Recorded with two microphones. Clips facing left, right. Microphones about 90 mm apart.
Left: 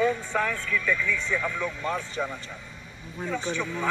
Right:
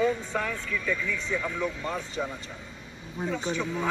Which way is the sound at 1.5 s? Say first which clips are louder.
Left 1 dB; 5° right (ahead or behind).